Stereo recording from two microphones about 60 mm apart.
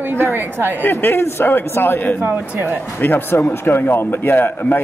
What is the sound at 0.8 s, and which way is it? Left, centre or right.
Speech, left.